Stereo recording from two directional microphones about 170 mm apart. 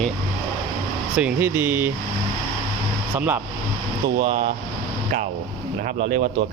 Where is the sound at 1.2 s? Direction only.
10° right (ahead or behind).